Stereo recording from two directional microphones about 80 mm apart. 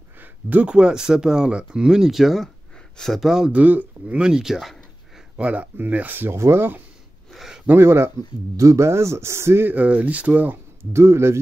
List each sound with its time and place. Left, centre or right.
0.2 s speech: centre
3.5 s speech: centre
4.2 s speech: centre
5.4 s speech: centre
7.3 s a sound: centre
7.7 s speech: right
10.9 s speech: right